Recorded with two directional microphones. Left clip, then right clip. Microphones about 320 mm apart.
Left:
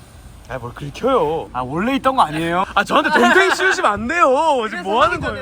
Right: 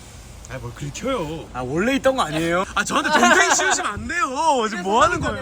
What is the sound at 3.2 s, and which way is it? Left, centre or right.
Speech, right.